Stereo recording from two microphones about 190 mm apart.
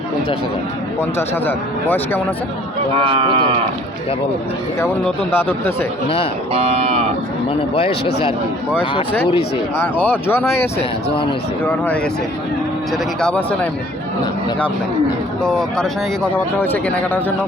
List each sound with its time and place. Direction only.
1.5 s speech: 10° left (ahead or behind)
3.1 s speech: 25° right (ahead or behind)
5.0 s speech: 10° left (ahead or behind)
6.5 s speech: 30° right (ahead or behind)
8.8 s speech: 25° left (ahead or behind)
9.8 s speech: 10° left (ahead or behind)
13.1 s speech: 5° left (ahead or behind)
15.4 s speech: 5° left (ahead or behind)